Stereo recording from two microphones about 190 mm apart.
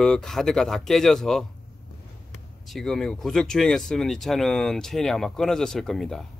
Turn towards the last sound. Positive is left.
turn(degrees=0)  # may be behind; listen again after turning